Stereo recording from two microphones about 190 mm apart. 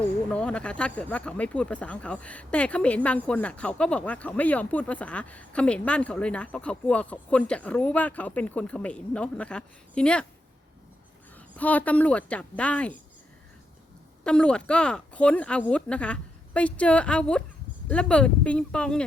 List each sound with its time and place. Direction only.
0.3 s speech: 5° left (ahead or behind)
11.3 s speech: 10° left (ahead or behind)
14.3 s speech: 5° left (ahead or behind)